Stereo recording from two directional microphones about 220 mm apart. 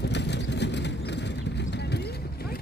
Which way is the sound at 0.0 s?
50° left (ahead or behind).